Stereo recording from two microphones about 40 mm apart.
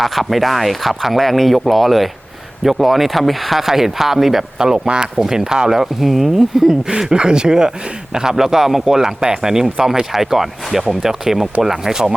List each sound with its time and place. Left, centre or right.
0.0 s a man's voice: centre
7.0 s a man's voice: centre